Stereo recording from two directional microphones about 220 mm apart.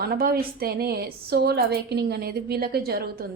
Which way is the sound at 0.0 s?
45° right (ahead or behind).